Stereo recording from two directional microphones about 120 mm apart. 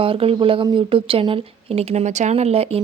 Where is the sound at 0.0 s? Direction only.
50° right (ahead or behind).